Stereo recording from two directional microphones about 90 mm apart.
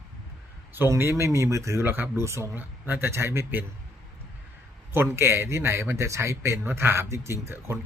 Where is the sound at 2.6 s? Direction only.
20° right (ahead or behind).